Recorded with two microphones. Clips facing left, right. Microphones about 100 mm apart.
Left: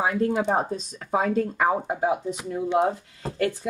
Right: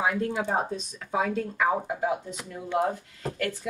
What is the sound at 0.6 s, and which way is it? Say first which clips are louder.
Speech: left 3 dB; 35° left (ahead or behind).